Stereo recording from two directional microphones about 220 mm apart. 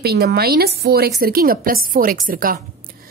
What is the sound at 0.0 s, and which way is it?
A woman's voice, 45° right (ahead or behind).